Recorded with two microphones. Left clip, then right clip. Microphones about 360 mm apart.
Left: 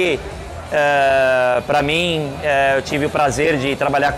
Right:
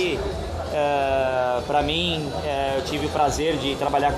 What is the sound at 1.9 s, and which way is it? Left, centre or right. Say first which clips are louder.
Speech: left 6 dB; left.